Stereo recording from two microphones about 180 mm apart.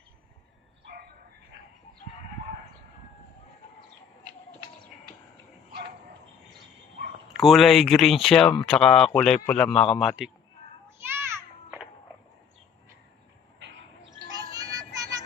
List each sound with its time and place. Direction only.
7.3 s speech: centre (ahead or behind)
11.0 s children playing: 10° right (ahead or behind)
14.3 s music: 20° right (ahead or behind)